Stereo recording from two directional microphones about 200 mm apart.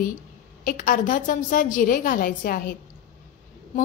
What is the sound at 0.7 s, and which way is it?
A woman's voice, 40° left (ahead or behind).